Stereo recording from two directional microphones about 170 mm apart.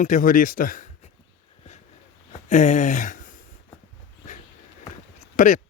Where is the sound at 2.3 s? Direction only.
45° left (ahead or behind).